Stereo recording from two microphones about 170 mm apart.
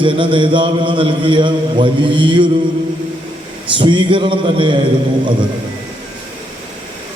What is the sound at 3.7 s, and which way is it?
A man's voice, 30° right (ahead or behind).